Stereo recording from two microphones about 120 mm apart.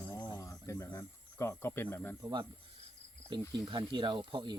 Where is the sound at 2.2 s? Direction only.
35° right (ahead or behind).